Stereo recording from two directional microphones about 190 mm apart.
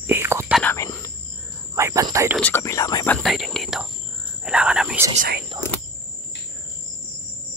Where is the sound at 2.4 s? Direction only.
15° left (ahead or behind).